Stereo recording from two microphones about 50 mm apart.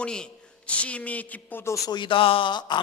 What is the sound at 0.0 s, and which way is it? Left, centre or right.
A man's voice, centre.